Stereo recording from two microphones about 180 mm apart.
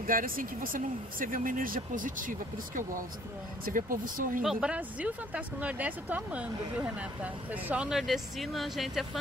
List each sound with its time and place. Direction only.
0.0 s speech: 50° right (ahead or behind)
4.4 s speech: 5° right (ahead or behind)